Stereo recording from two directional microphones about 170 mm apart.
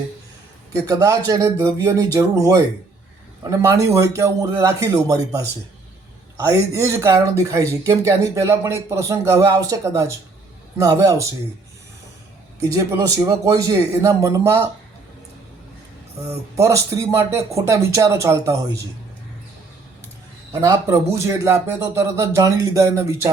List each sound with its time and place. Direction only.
0.7 s a man's voice: 20° right (ahead or behind)
6.5 s a man's voice: 15° right (ahead or behind)
12.6 s a man's voice: 20° right (ahead or behind)
16.6 s speech: 15° right (ahead or behind)
20.5 s speech: 20° right (ahead or behind)